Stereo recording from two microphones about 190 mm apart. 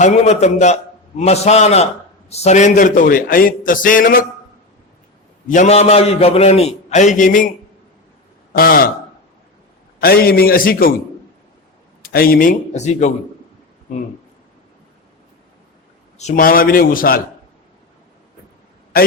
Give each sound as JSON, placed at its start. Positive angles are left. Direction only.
{"t": 0.0, "sound": "a man's voice", "side_deg": 35}
{"t": 5.5, "sound": "a man's voice", "side_deg": 40}
{"t": 8.5, "sound": "a man's voice", "side_deg": 50}
{"t": 10.0, "sound": "a man's voice", "side_deg": 50}
{"t": 12.0, "sound": "a man's voice", "side_deg": 55}
{"t": 16.1, "sound": "a man's voice", "side_deg": 40}